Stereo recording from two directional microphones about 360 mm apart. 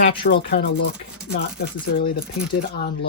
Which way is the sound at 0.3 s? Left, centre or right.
Left.